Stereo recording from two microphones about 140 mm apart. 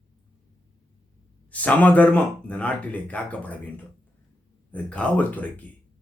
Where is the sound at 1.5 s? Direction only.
10° left (ahead or behind).